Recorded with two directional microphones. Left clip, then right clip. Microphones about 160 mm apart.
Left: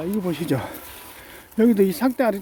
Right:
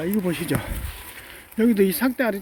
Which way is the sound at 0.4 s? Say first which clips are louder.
Left 2 dB; 25° left (ahead or behind).